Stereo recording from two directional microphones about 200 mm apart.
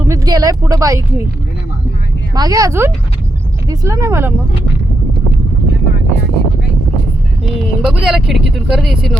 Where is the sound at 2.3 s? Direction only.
15° right (ahead or behind).